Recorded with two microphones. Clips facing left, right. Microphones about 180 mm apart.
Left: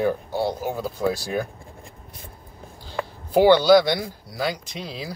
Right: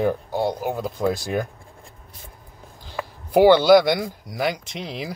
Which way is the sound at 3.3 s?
20° right (ahead or behind).